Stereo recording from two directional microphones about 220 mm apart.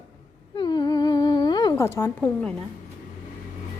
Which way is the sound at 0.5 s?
20° left (ahead or behind).